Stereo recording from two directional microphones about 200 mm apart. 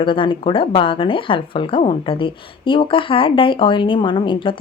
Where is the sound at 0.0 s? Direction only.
25° left (ahead or behind).